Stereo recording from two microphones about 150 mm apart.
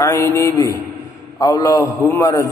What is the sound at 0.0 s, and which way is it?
A man's voice, 20° left (ahead or behind).